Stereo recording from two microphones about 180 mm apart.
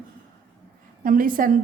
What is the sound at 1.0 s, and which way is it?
Speech, 50° right (ahead or behind).